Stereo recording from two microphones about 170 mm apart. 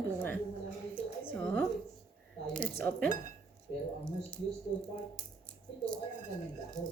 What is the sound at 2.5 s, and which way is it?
Speech, 10° left (ahead or behind).